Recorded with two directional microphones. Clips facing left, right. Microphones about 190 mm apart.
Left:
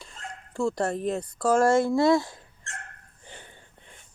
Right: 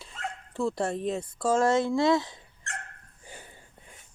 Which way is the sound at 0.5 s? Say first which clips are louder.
Left 2 dB; centre (ahead or behind).